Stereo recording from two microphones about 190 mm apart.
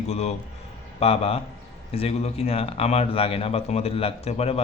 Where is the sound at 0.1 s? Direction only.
35° left (ahead or behind).